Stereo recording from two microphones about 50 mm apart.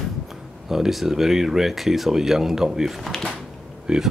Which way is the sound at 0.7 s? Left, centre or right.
Centre.